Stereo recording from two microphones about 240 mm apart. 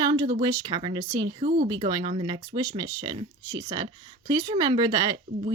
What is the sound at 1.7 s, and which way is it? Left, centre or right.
Speech, centre.